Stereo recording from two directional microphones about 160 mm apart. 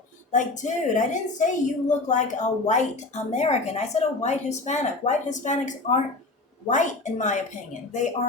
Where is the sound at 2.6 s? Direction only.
45° left (ahead or behind).